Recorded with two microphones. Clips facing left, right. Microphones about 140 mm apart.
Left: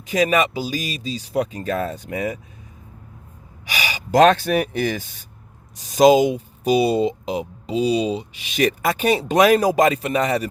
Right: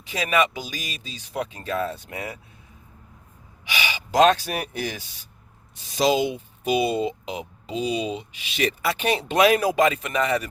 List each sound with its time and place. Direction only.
0.1 s speech: 40° left (ahead or behind)
3.7 s speech: 40° left (ahead or behind)